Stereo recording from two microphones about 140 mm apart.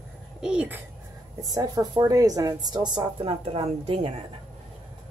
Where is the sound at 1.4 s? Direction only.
25° right (ahead or behind).